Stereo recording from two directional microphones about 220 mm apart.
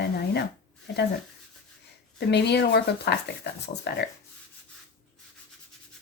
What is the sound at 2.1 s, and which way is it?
A woman's voice, 50° left (ahead or behind).